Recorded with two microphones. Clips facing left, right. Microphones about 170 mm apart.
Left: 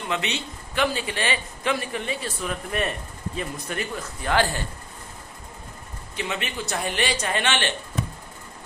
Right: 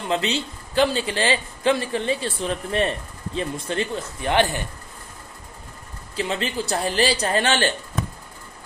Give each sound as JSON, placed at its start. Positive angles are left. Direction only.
{"t": 0.1, "sound": "a man's voice", "side_deg": -30}
{"t": 6.1, "sound": "a man's voice", "side_deg": -30}